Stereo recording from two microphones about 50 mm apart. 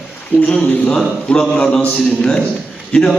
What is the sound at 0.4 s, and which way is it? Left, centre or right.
Speech, left.